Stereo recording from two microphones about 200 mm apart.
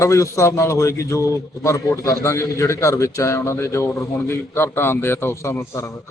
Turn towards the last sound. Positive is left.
turn(degrees=10)  # may be behind; listen again after turning